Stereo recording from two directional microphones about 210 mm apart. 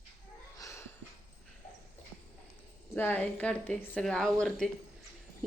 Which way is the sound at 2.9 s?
10° left (ahead or behind).